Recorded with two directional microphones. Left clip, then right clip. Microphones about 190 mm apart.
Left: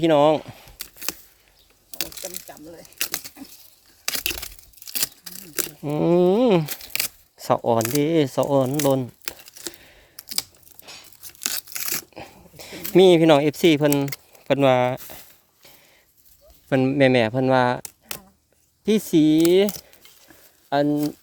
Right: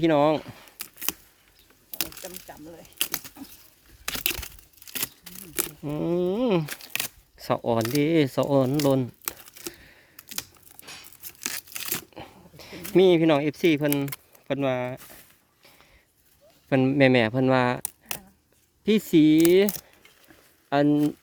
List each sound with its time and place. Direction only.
0.0 s speech: 10° left (ahead or behind)
0.8 s camera: 10° right (ahead or behind)
3.1 s patter: centre (ahead or behind)
4.4 s tearing: centre (ahead or behind)
5.8 s speech: 20° left (ahead or behind)
6.8 s a sound: centre (ahead or behind)
7.3 s speech: 10° left (ahead or behind)
9.7 s a sound: 5° left (ahead or behind)
11.4 s tearing: 5° right (ahead or behind); by 12.8 s 15° left (ahead or behind)
12.9 s speech: 20° left (ahead or behind)
16.6 s speech: 10° left (ahead or behind)
18.9 s speech: 5° left (ahead or behind)